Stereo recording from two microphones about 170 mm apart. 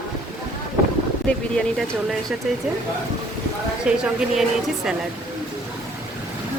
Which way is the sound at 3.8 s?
5° right (ahead or behind).